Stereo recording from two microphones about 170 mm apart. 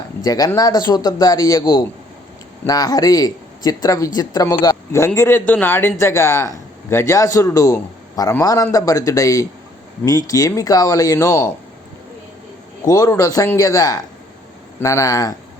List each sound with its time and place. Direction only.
0.2 s a man's voice: 20° left (ahead or behind)
12.8 s a man's voice: 20° left (ahead or behind)